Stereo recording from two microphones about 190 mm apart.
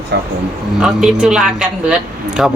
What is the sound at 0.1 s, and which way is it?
Speech, 60° right (ahead or behind).